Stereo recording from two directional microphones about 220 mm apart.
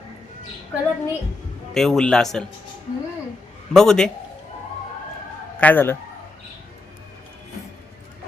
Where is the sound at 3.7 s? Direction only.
Centre (ahead or behind).